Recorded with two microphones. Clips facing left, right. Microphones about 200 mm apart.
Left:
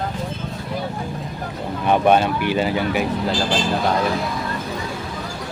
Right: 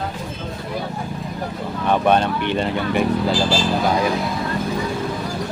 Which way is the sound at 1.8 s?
10° left (ahead or behind).